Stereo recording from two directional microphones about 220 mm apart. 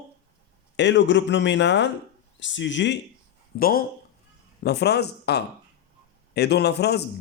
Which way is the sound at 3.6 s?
40° left (ahead or behind).